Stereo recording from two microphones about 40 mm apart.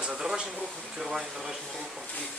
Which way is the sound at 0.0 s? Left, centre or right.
Centre.